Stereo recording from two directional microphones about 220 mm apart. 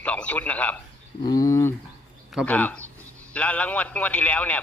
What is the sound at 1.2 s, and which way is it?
Bird, 15° left (ahead or behind).